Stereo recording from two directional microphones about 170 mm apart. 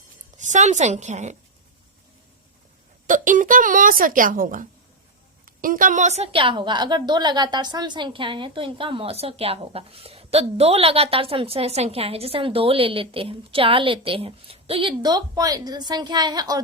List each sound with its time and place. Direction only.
0.3 s speech: 45° right (ahead or behind)
3.1 s a woman's voice: 50° right (ahead or behind); by 16.6 s 25° right (ahead or behind)